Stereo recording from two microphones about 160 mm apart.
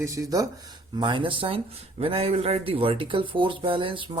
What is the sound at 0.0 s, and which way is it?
Speech, 20° right (ahead or behind).